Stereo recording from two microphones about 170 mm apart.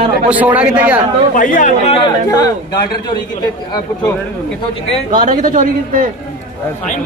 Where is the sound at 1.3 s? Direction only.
50° left (ahead or behind).